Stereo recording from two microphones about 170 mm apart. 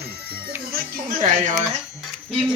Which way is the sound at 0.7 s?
55° right (ahead or behind).